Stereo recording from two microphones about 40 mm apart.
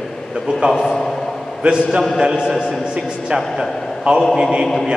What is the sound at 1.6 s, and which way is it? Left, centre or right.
Speech, right.